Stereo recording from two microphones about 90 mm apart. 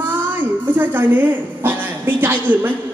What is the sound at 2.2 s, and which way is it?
Music, 20° right (ahead or behind).